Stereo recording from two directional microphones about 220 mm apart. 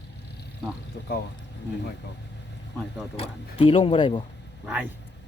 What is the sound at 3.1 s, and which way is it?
Speech, 25° left (ahead or behind).